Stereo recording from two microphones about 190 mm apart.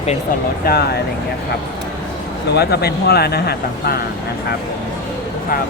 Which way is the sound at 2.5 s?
55° left (ahead or behind).